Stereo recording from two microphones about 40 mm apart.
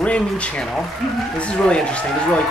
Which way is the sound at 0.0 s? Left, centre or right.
Left.